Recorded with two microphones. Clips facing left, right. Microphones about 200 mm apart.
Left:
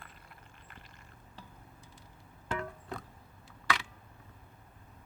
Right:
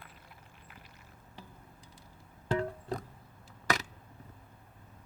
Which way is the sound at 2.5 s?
35° right (ahead or behind).